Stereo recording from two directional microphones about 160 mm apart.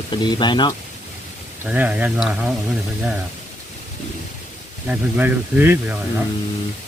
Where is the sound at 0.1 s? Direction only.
30° left (ahead or behind).